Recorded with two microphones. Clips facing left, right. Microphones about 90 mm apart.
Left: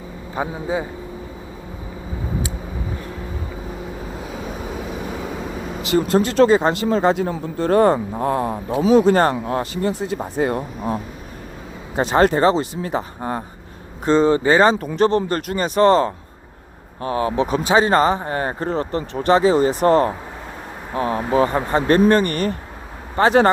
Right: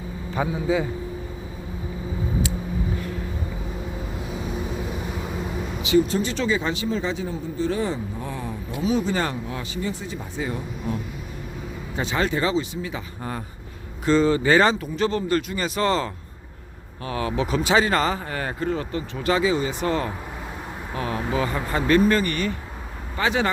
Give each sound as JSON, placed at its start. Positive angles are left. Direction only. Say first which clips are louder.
{"t": 0.3, "sound": "a man's voice", "louder": "even", "side_deg": 25}
{"t": 5.9, "sound": "speech", "louder": "left 3 dB", "side_deg": 55}
{"t": 9.5, "sound": "speech", "louder": "left 8 dB", "side_deg": 50}
{"t": 14.8, "sound": "speech", "louder": "left 7 dB", "side_deg": 50}
{"t": 15.5, "sound": "speech", "louder": "left 8 dB", "side_deg": 40}